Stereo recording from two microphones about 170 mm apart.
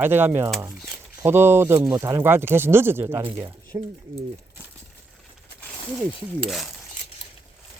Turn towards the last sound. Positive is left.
turn(degrees=0)  # may be behind; listen again after turning